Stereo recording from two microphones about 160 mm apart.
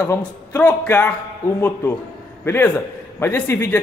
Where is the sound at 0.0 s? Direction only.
15° left (ahead or behind).